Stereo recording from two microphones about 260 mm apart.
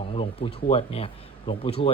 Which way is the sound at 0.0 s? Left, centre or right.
Left.